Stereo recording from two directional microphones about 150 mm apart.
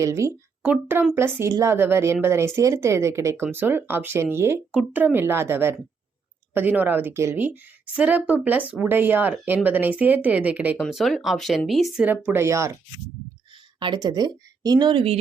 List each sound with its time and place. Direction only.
0.0 s a woman's voice: 20° right (ahead or behind)
10.8 s speech: centre (ahead or behind)
12.0 s a woman's voice: 10° right (ahead or behind)
13.7 s a woman's voice: 30° right (ahead or behind)